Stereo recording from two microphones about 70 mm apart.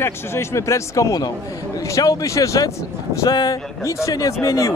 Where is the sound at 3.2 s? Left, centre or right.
Left.